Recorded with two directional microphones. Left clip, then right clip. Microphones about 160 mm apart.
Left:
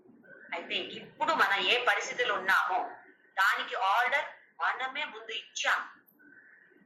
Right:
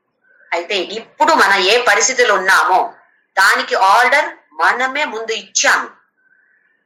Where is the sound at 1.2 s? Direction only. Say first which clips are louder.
Right 16 dB; 90° right.